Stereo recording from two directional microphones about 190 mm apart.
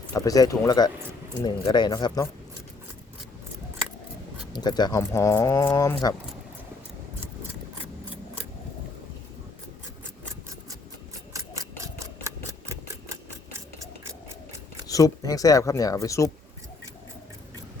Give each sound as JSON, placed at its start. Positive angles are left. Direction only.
{"t": 0.1, "sound": "speech", "side_deg": 20}
{"t": 4.5, "sound": "speech", "side_deg": 20}
{"t": 11.3, "sound": "mechanisms", "side_deg": -15}
{"t": 11.9, "sound": "a sound", "side_deg": -15}
{"t": 14.8, "sound": "speech", "side_deg": 20}